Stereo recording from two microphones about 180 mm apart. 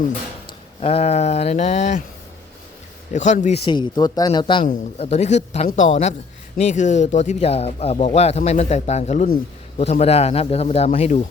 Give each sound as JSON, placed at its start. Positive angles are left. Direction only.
{"t": 0.8, "sound": "speech", "side_deg": 35}
{"t": 3.2, "sound": "a man's voice", "side_deg": 45}
{"t": 3.6, "sound": "speech", "side_deg": 25}
{"t": 4.9, "sound": "a man's voice", "side_deg": 35}